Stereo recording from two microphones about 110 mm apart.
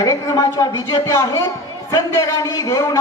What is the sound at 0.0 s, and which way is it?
A man's voice, 30° left (ahead or behind).